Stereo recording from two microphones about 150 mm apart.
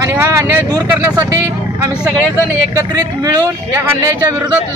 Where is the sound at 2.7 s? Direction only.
25° right (ahead or behind).